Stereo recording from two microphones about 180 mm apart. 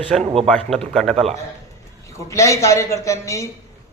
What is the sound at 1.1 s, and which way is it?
Speech, 35° right (ahead or behind).